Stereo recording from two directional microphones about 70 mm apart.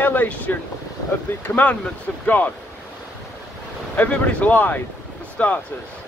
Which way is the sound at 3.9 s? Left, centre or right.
Centre.